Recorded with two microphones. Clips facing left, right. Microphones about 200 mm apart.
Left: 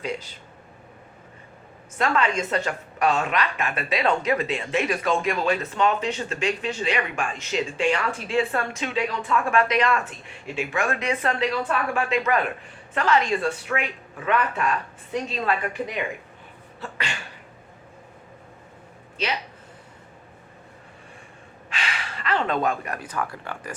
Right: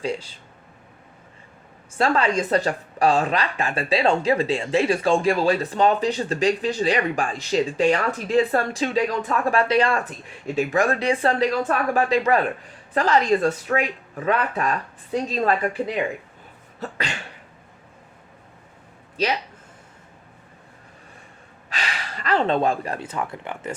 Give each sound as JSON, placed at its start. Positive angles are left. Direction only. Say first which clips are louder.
{"t": 0.0, "sound": "a woman's voice", "louder": "right 3 dB", "side_deg": -30}
{"t": 2.0, "sound": "a woman's voice", "louder": "right 3 dB", "side_deg": -35}
{"t": 21.7, "sound": "speech", "louder": "right 1 dB", "side_deg": -40}